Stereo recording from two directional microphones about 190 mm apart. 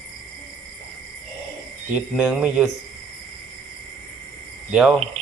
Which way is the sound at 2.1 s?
5° right (ahead or behind).